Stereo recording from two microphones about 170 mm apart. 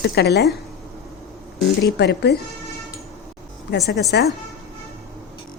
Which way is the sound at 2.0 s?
75° left (ahead or behind).